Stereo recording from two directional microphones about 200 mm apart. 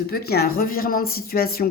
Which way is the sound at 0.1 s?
50° left (ahead or behind).